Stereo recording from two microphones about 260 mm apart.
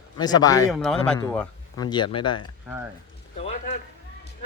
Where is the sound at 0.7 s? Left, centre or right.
Centre.